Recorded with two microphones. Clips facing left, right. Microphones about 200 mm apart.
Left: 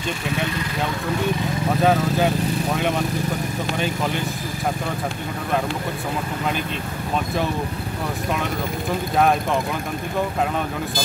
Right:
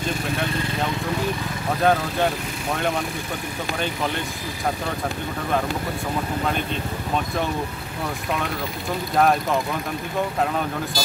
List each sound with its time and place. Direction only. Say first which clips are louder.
1.8 s speech: left 1 dB; centre (ahead or behind)
9.1 s speech: even; centre (ahead or behind)